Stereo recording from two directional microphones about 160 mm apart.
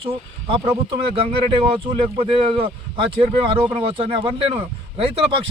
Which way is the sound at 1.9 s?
35° right (ahead or behind).